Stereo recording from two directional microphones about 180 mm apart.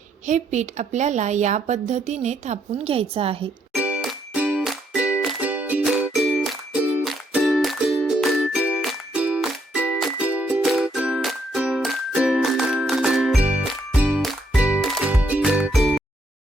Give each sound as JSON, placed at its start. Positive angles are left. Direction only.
{"t": 0.3, "sound": "a woman's voice", "side_deg": -40}
{"t": 3.7, "sound": "music", "side_deg": -5}